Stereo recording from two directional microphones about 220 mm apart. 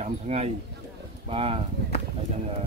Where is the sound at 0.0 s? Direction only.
30° right (ahead or behind).